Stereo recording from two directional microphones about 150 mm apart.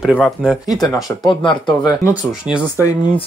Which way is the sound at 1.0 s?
30° left (ahead or behind).